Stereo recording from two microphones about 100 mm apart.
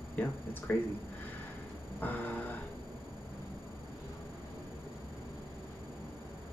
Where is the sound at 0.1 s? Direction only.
15° left (ahead or behind).